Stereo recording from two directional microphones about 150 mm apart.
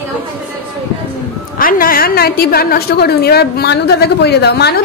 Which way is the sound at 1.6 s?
70° left (ahead or behind).